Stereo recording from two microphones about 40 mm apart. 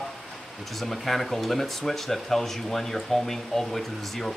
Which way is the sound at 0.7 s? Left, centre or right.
Centre.